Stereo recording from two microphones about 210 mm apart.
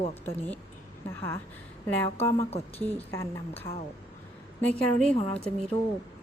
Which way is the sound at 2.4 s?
30° left (ahead or behind).